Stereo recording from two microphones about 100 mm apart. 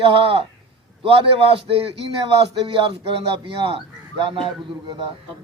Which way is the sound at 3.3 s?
60° right (ahead or behind).